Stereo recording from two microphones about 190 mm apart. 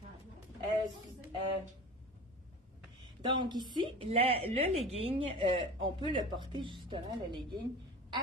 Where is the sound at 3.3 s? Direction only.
25° right (ahead or behind).